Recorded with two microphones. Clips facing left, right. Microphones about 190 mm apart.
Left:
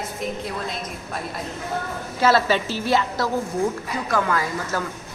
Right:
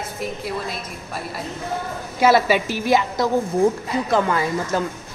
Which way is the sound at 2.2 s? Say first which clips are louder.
Right 3 dB; 15° right (ahead or behind).